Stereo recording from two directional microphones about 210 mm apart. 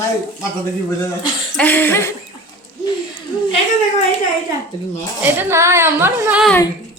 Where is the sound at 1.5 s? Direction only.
10° left (ahead or behind).